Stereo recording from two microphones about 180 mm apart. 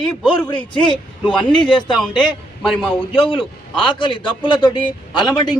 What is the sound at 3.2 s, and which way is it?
A man's voice, 30° left (ahead or behind).